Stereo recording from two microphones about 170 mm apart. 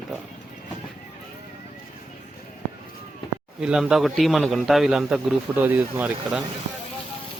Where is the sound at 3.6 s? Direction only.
5° right (ahead or behind).